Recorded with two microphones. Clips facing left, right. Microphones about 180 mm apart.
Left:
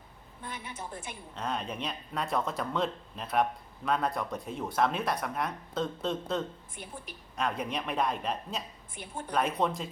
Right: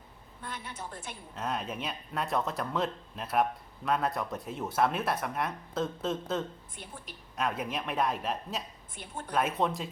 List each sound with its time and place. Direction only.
0.4 s a woman's voice: 10° left (ahead or behind)
1.4 s speech: 5° right (ahead or behind)
9.0 s a woman's voice: 10° left (ahead or behind)
9.3 s speech: centre (ahead or behind)